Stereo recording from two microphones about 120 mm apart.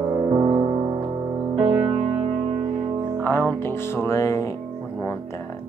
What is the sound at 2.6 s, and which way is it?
Music, 45° right (ahead or behind).